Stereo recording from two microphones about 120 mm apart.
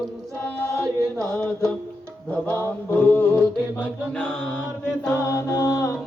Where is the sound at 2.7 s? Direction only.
15° left (ahead or behind).